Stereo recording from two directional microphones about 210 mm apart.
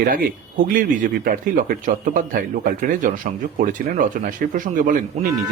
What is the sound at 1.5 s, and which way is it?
Speech, 40° right (ahead or behind).